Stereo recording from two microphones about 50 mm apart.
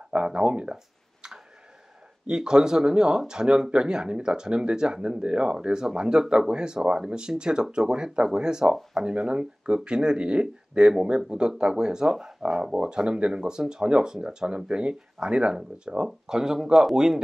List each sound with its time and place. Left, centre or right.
0.1 s speech: right
2.2 s speech: centre